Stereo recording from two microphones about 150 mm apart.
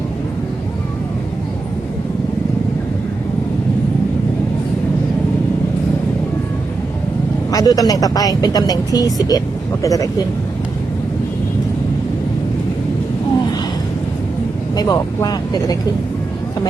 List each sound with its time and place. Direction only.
7.5 s a woman's voice: 25° left (ahead or behind)
14.8 s a woman's voice: 25° left (ahead or behind)